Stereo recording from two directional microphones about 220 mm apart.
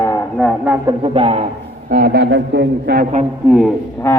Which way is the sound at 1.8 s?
45° right (ahead or behind).